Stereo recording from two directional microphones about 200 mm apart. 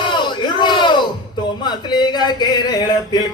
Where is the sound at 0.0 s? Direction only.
25° left (ahead or behind).